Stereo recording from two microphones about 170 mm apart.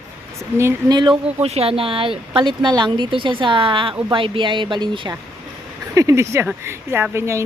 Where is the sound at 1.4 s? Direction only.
35° right (ahead or behind).